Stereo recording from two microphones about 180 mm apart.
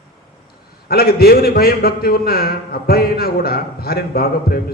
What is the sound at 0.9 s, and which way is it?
A man's voice, 60° left (ahead or behind).